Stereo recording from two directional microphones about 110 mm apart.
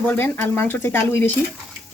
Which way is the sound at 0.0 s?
20° left (ahead or behind).